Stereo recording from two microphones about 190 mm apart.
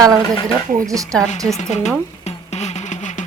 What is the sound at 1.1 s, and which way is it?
Speech, 5° left (ahead or behind).